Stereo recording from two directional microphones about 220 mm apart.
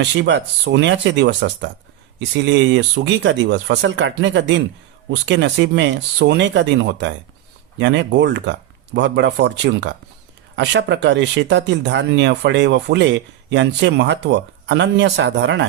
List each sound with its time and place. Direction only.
0.0 s speech: 55° right (ahead or behind)